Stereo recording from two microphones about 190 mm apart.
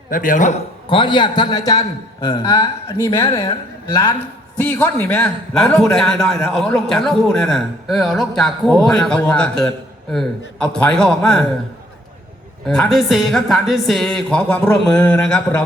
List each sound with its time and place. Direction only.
0.1 s a man's voice: 45° left (ahead or behind)
0.9 s a man's voice: 25° left (ahead or behind)
4.5 s a man's voice: 10° left (ahead or behind)
12.6 s a man's voice: 5° left (ahead or behind)